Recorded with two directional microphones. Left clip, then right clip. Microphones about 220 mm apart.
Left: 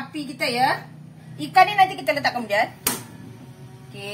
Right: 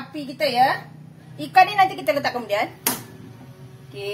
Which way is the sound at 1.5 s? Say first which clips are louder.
Even; 25° right (ahead or behind).